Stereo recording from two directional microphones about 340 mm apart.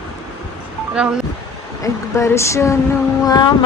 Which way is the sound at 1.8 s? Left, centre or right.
Centre.